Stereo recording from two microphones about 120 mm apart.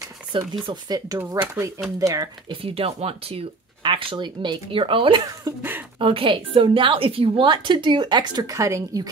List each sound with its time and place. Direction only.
0.3 s a woman's voice: 35° right (ahead or behind)
2.6 s a woman's voice: 55° right (ahead or behind); by 9.0 s 25° right (ahead or behind)